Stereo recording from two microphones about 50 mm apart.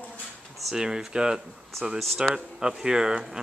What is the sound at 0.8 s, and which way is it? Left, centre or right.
Speech, centre.